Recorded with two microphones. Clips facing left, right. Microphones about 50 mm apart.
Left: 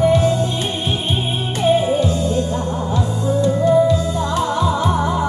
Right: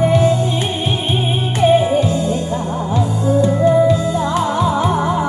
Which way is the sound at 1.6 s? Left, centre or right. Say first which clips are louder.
Right 3 dB; centre.